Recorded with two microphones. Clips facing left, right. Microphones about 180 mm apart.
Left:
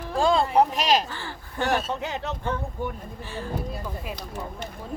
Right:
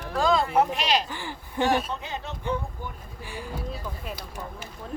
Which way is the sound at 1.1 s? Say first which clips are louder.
Right 1 dB; 15° right (ahead or behind).